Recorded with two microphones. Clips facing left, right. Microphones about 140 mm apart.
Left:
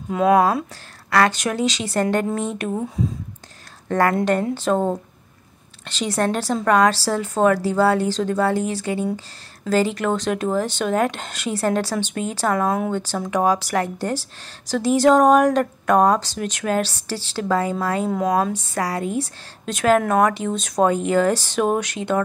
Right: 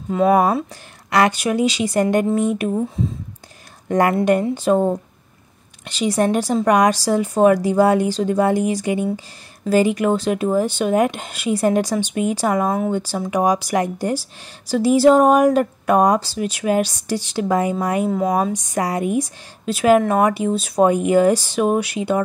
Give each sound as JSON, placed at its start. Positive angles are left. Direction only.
{"t": 0.1, "sound": "speech", "side_deg": 0}
{"t": 3.9, "sound": "speech", "side_deg": -15}
{"t": 18.0, "sound": "speech", "side_deg": 0}
{"t": 18.3, "sound": "speech", "side_deg": -15}